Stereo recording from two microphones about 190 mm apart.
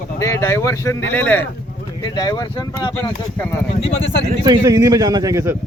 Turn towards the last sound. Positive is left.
turn(degrees=-15)  # may be behind; listen again after turning